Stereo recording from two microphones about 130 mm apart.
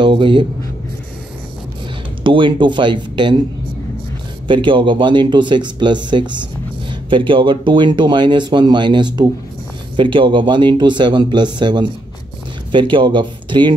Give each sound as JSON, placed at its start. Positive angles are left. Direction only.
{"t": 0.0, "sound": "speech", "side_deg": -40}
{"t": 2.2, "sound": "speech", "side_deg": -40}
{"t": 4.5, "sound": "speech", "side_deg": -40}